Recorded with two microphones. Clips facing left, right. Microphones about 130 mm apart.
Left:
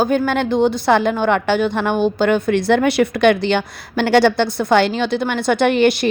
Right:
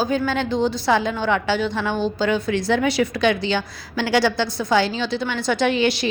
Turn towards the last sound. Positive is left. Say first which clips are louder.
# left 5 dB
turn(degrees=55)  # may be behind; listen again after turning